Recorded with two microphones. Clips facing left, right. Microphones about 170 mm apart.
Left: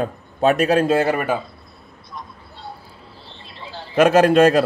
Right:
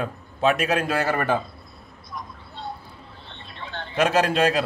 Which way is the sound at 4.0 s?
50° left (ahead or behind).